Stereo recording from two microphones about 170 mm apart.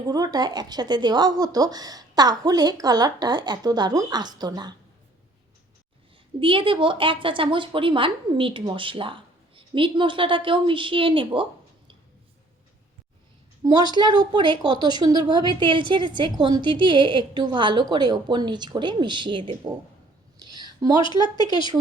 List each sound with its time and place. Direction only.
0.0 s speech: 20° right (ahead or behind)
6.4 s a woman's voice: 30° right (ahead or behind)
13.7 s speech: 25° right (ahead or behind)
20.4 s a sound: 25° right (ahead or behind)
21.0 s speech: 25° left (ahead or behind)